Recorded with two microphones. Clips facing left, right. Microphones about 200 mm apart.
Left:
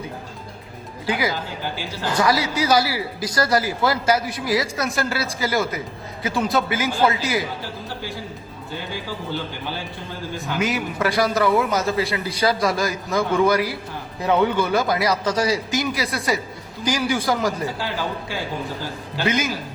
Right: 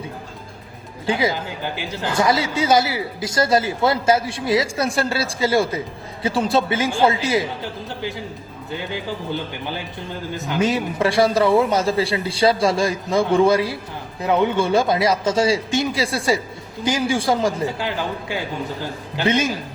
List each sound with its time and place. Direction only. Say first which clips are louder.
1.0 s a woman's voice: right 3 dB; 25° right (ahead or behind)
10.3 s a woman's voice: right 3 dB; 20° right (ahead or behind)
19.2 s a woman's voice: right 3 dB; 30° right (ahead or behind)